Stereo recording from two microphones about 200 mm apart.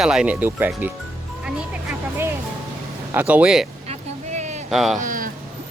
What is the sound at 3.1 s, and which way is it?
Speech, 10° right (ahead or behind).